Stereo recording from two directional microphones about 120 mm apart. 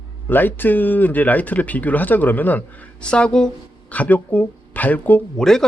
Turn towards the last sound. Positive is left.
turn(degrees=5)  # may be behind; listen again after turning